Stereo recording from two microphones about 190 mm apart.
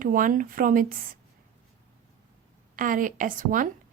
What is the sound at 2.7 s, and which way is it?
Speech, 45° right (ahead or behind).